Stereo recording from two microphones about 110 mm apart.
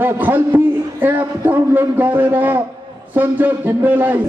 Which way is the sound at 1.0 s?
20° right (ahead or behind).